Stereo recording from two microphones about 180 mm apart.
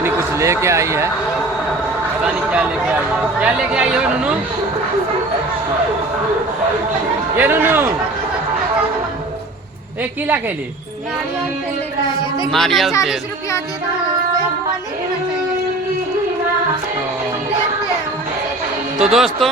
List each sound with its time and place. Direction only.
0.0 s speech: 15° right (ahead or behind)
2.2 s speech: 5° right (ahead or behind)
7.3 s speech: 10° right (ahead or behind)
10.0 s speech: 10° right (ahead or behind)
12.5 s speech: centre (ahead or behind)
19.1 s speech: centre (ahead or behind)